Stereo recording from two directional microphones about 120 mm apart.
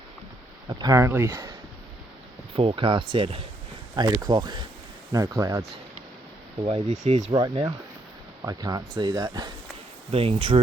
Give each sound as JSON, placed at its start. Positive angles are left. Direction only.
{"t": 0.7, "sound": "speech", "side_deg": -30}
{"t": 1.1, "sound": "speech", "side_deg": -15}
{"t": 2.6, "sound": "speech", "side_deg": -50}
{"t": 3.9, "sound": "speech", "side_deg": -30}
{"t": 7.0, "sound": "speech", "side_deg": -75}
{"t": 7.3, "sound": "speech", "side_deg": -35}
{"t": 10.1, "sound": "speech", "side_deg": -50}